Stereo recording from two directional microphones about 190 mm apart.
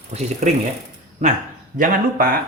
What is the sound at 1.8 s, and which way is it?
Speech, 50° right (ahead or behind).